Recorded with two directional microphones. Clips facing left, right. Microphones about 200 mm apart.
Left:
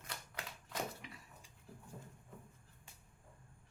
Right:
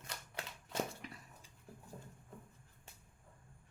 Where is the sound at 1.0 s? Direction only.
40° right (ahead or behind).